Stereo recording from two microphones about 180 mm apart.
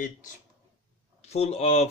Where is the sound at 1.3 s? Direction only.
35° left (ahead or behind).